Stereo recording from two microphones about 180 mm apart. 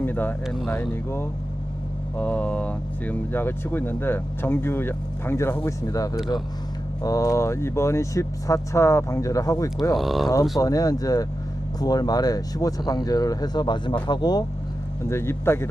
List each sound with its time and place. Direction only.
0.0 s speech: 10° left (ahead or behind)
0.4 s speech: centre (ahead or behind)
0.7 s speech: 15° left (ahead or behind)
10.0 s speech: centre (ahead or behind)
10.6 s speech: 20° left (ahead or behind)